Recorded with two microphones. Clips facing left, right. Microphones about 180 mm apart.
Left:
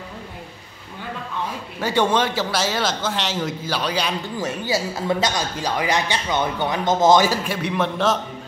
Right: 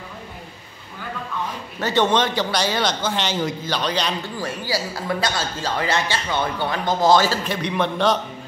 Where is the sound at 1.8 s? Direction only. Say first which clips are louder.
Even; 10° left (ahead or behind).